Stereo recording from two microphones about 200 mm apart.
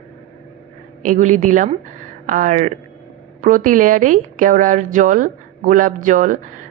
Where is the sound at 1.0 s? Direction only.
40° right (ahead or behind).